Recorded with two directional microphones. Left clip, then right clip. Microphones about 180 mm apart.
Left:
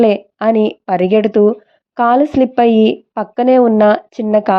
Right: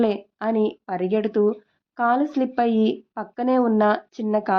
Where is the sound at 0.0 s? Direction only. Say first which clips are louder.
Left 11 dB; 40° left (ahead or behind).